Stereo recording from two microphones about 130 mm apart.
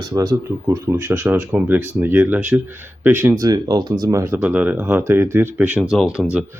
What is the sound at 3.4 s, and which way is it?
Speech, 30° right (ahead or behind).